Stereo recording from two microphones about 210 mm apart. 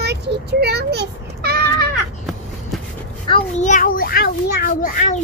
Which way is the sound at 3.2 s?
30° left (ahead or behind).